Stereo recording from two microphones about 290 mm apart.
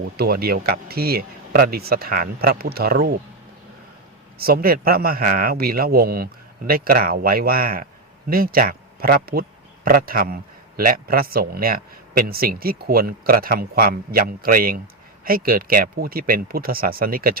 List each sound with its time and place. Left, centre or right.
0.0 s speech: right
4.4 s speech: right